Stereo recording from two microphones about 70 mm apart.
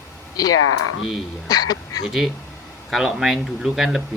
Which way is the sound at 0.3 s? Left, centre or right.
Left.